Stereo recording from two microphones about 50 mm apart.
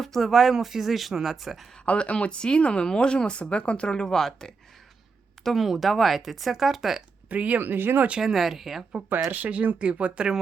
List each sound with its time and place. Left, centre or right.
0.0 s speech: centre
1.8 s speech: left; by 7.0 s centre
7.3 s speech: right
7.6 s speech: right
8.2 s speech: centre
9.3 s speech: right